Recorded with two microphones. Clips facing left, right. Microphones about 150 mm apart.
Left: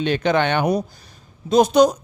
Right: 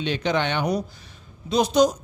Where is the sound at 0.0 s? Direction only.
55° left (ahead or behind).